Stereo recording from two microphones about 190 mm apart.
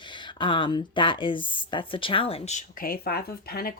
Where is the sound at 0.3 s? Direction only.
25° left (ahead or behind).